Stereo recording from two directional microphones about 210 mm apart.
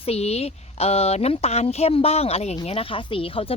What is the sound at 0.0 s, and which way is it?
A woman's voice, 30° left (ahead or behind).